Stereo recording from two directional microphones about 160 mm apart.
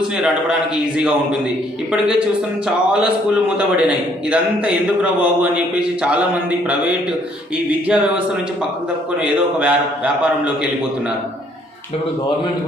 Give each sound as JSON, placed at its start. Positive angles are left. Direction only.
{"t": 0.9, "sound": "a man's voice", "side_deg": -5}
{"t": 7.7, "sound": "a man's voice", "side_deg": -5}